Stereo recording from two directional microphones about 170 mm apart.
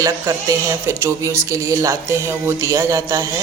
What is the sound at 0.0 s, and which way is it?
Speech, 20° right (ahead or behind).